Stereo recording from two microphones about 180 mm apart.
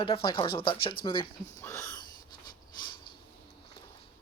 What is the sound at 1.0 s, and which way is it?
Speech, 25° left (ahead or behind).